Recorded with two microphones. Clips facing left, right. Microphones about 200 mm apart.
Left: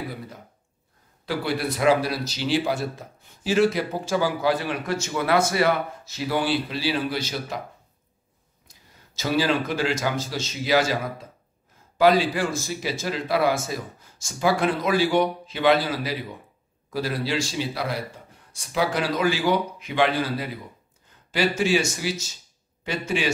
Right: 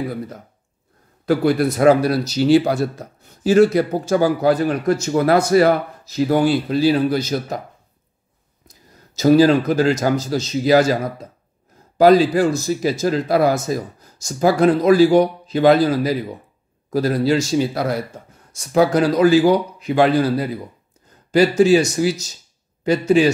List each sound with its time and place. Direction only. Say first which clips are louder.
1.2 s speech: right 10 dB; 45° right (ahead or behind)
8.6 s speech: right 7 dB; 40° right (ahead or behind)